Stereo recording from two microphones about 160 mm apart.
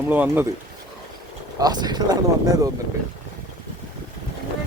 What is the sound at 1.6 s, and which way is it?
Speech, 25° right (ahead or behind).